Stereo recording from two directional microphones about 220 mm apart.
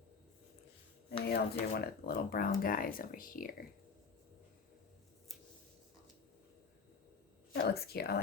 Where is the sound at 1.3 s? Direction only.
45° left (ahead or behind).